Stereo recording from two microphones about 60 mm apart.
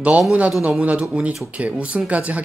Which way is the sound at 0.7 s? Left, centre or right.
Right.